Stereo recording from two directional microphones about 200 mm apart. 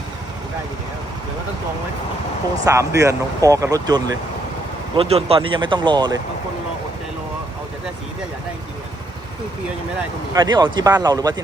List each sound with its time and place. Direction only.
2.6 s speech: 15° right (ahead or behind)
4.9 s speech: 30° right (ahead or behind)
10.3 s speech: 20° right (ahead or behind)